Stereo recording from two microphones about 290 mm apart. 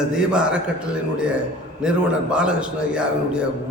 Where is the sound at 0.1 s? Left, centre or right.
Centre.